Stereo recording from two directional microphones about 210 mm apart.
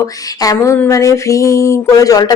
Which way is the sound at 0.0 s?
15° left (ahead or behind).